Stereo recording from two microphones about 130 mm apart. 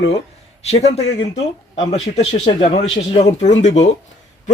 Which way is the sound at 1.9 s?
55° left (ahead or behind).